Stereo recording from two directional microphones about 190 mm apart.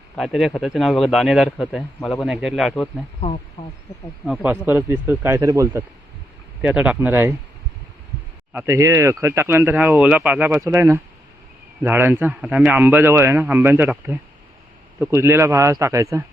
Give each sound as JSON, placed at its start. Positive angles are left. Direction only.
{"t": 0.2, "sound": "speech", "side_deg": 0}
{"t": 3.2, "sound": "speech", "side_deg": 35}
{"t": 4.3, "sound": "speech", "side_deg": -10}
{"t": 8.5, "sound": "speech", "side_deg": -15}